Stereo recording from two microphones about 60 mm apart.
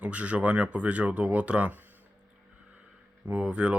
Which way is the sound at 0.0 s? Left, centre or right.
Right.